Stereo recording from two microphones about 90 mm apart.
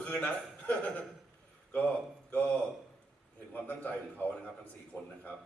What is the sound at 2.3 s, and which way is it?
A man's voice, 15° left (ahead or behind).